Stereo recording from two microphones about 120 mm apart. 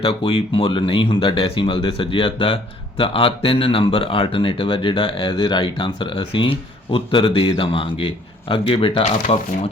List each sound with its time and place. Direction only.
0.0 s speech: 45° left (ahead or behind)